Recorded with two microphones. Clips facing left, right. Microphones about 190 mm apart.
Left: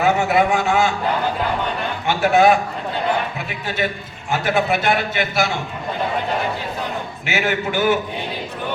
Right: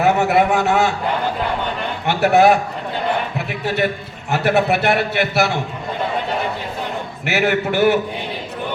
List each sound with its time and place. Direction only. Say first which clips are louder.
0.0 s a sound: right 2 dB; 65° right (ahead or behind)
2.0 s a man's voice: right 2 dB; 65° right (ahead or behind)
4.3 s a man's voice: right 3 dB; 65° right (ahead or behind)
7.3 s a man's voice: right 4 dB; 65° right (ahead or behind)